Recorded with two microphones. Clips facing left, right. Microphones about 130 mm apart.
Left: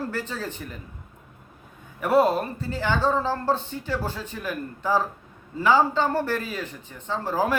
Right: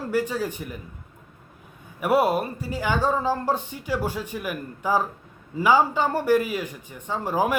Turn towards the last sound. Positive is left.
turn(degrees=-15)  # may be behind; listen again after turning